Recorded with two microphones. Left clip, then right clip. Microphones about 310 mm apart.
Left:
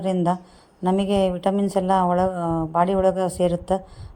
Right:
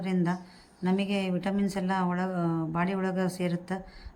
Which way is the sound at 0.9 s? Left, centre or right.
Left.